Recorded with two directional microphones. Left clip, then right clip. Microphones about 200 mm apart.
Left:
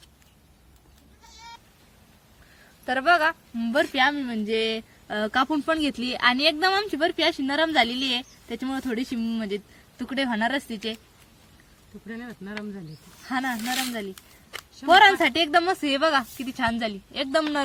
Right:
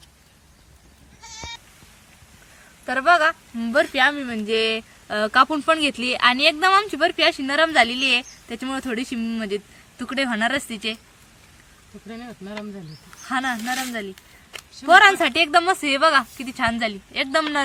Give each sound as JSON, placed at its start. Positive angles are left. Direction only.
{"t": 1.3, "sound": "sheep", "side_deg": 40}
{"t": 2.8, "sound": "a woman's voice", "side_deg": 35}
{"t": 12.0, "sound": "speech", "side_deg": -20}
{"t": 13.2, "sound": "speech", "side_deg": 30}